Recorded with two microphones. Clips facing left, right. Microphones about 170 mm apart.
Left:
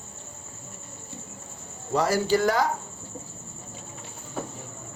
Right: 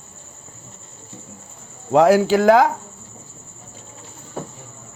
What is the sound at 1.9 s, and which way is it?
Speech, 65° right (ahead or behind).